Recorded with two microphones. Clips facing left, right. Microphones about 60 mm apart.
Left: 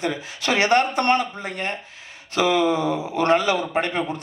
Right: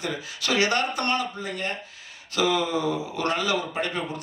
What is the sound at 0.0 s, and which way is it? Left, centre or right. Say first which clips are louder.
A man's voice: left 5 dB; left.